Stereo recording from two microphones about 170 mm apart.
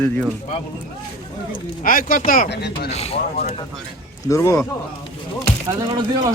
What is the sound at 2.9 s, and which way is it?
Speech, 35° left (ahead or behind).